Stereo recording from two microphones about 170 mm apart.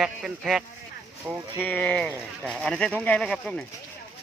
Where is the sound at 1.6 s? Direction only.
10° left (ahead or behind).